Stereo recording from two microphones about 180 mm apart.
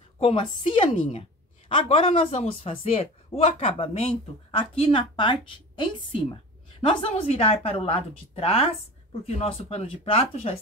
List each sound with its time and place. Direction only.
0.2 s a woman's voice: 30° left (ahead or behind)